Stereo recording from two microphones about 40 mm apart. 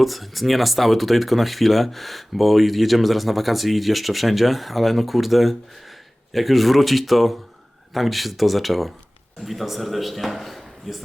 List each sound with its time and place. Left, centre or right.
0.0 s speech: centre